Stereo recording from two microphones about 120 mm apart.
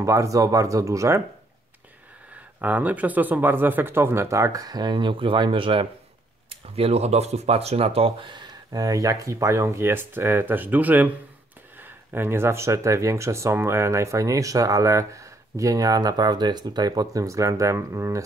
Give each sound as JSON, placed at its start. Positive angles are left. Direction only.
{"t": 0.0, "sound": "speech", "side_deg": -25}
{"t": 2.3, "sound": "speech", "side_deg": -15}
{"t": 6.6, "sound": "speech", "side_deg": -55}